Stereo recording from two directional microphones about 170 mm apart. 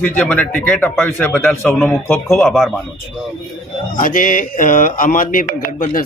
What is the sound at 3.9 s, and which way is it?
Speech, 50° left (ahead or behind).